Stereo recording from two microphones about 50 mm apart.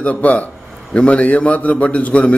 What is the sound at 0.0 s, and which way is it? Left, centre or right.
A man's voice, left.